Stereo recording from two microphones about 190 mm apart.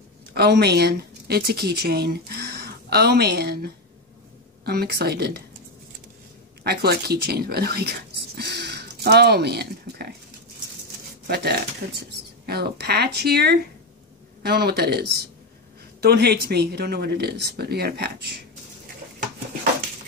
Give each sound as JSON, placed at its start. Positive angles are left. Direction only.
{"t": 0.3, "sound": "a woman's voice", "side_deg": -60}
{"t": 6.6, "sound": "speech", "side_deg": -55}
{"t": 11.2, "sound": "speech", "side_deg": -55}